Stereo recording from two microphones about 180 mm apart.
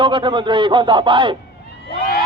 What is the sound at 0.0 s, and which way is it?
Speech, 25° right (ahead or behind).